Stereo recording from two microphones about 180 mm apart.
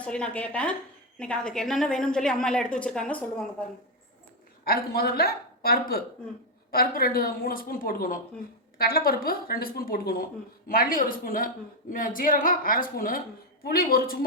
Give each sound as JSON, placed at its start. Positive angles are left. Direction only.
{"t": 0.0, "sound": "a woman's voice", "side_deg": 5}
{"t": 4.6, "sound": "a woman's voice", "side_deg": 60}